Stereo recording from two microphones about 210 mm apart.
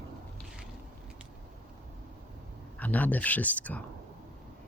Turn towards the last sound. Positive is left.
turn(degrees=5)  # may be behind; listen again after turning